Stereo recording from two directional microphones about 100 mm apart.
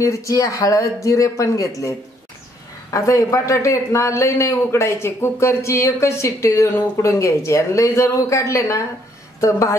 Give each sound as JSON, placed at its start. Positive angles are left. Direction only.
{"t": 0.0, "sound": "speech", "side_deg": 30}
{"t": 2.9, "sound": "a man's voice", "side_deg": 35}